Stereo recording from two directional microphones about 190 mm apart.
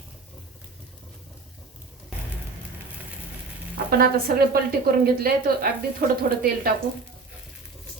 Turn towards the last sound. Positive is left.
turn(degrees=-50)  # may be behind; listen again after turning